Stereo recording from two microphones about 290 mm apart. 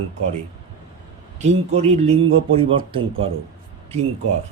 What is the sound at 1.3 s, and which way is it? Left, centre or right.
A man's voice, right.